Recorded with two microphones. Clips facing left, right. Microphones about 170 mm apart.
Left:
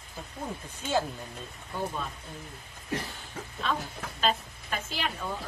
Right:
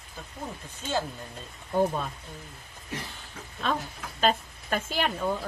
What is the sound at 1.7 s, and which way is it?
Speech, 45° right (ahead or behind).